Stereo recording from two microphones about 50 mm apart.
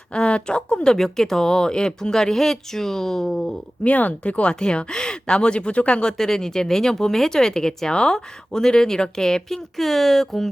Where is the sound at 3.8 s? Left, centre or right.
Left.